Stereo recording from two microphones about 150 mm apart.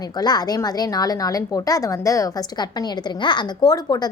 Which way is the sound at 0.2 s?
25° left (ahead or behind).